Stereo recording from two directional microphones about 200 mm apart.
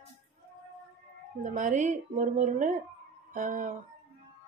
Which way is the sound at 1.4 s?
40° right (ahead or behind).